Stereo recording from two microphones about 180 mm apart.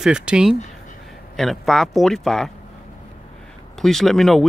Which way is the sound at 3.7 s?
Centre (ahead or behind).